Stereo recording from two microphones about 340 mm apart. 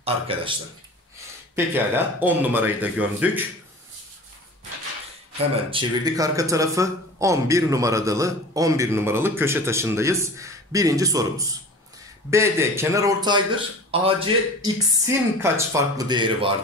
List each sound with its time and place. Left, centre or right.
0.0 s speech: centre
1.5 s speech: centre
5.7 s speech: centre